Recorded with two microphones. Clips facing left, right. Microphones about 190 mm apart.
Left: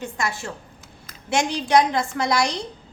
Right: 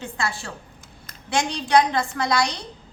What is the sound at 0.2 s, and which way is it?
A woman's voice, 20° left (ahead or behind).